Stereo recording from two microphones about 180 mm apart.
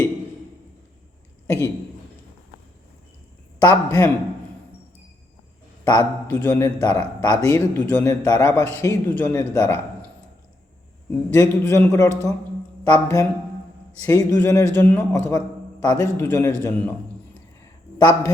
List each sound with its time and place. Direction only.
1.5 s speech: 15° left (ahead or behind)
3.6 s a man's voice: 20° left (ahead or behind)
5.8 s a man's voice: 20° left (ahead or behind)
11.3 s a man's voice: 15° left (ahead or behind)